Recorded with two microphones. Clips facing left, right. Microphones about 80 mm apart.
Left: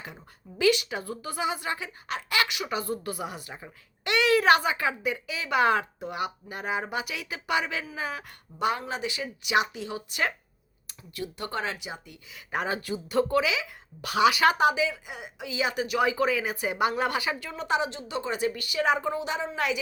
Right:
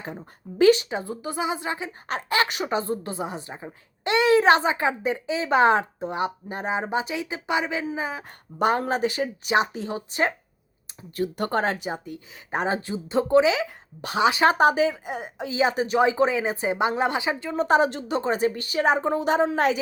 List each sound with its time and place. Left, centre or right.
0.0 s a woman's voice: right
2.0 s a woman's voice: right
8.5 s speech: right
11.2 s a woman's voice: right
17.6 s speech: right